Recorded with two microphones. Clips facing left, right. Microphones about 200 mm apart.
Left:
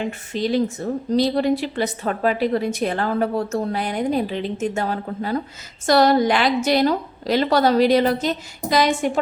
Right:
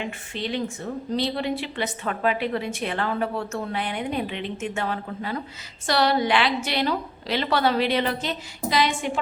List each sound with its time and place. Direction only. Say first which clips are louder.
0.0 s a woman's voice: left 7 dB; 40° left (ahead or behind)